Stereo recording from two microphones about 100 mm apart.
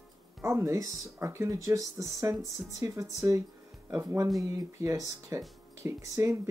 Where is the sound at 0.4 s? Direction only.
25° right (ahead or behind).